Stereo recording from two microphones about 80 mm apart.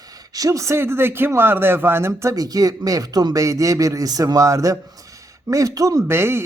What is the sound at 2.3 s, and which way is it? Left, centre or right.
A man's voice, right.